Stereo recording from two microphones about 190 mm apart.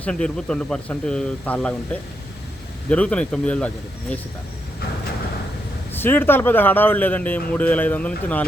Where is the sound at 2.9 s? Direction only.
5° left (ahead or behind).